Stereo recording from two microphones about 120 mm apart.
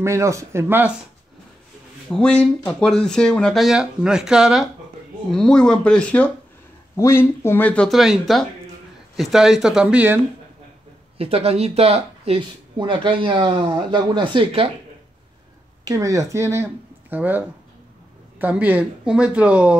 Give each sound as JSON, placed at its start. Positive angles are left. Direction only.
{"t": 0.0, "sound": "speech", "side_deg": -25}
{"t": 2.0, "sound": "speech", "side_deg": 5}
{"t": 5.3, "sound": "speech", "side_deg": 5}
{"t": 7.9, "sound": "speech", "side_deg": 0}
{"t": 11.1, "sound": "speech", "side_deg": -55}
{"t": 15.8, "sound": "speech", "side_deg": -30}